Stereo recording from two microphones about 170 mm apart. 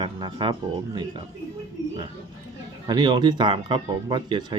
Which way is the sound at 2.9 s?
25° right (ahead or behind).